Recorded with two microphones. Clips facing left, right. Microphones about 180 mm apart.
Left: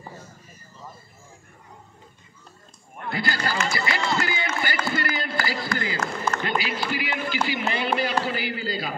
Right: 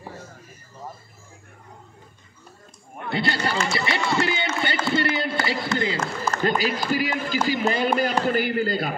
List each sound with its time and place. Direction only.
3.1 s speech: 25° right (ahead or behind)
4.1 s a sound: 25° right (ahead or behind)
4.9 s run: 25° right (ahead or behind)
6.3 s a man's voice: 40° right (ahead or behind)